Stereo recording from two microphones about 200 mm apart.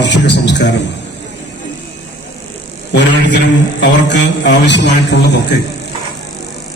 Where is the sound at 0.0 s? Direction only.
60° left (ahead or behind).